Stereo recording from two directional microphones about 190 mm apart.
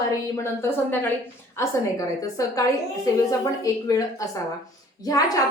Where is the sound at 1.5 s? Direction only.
15° left (ahead or behind).